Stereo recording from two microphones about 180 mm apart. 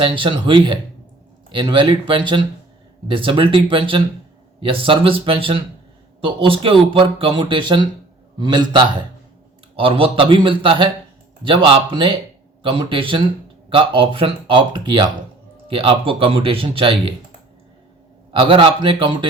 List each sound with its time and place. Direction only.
0.0 s speech: 30° right (ahead or behind)
18.3 s speech: 30° right (ahead or behind)